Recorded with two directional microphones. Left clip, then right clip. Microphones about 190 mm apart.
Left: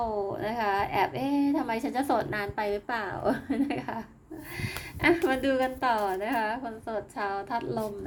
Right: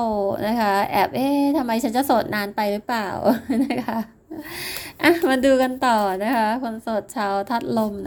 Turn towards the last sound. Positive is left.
turn(degrees=-45)  # may be behind; listen again after turning